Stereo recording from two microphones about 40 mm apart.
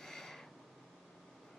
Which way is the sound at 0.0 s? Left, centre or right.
Centre.